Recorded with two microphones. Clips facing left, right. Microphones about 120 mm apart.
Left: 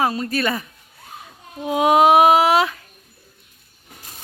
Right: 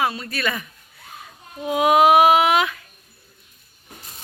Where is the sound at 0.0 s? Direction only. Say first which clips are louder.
Left 3 dB; 40° left (ahead or behind).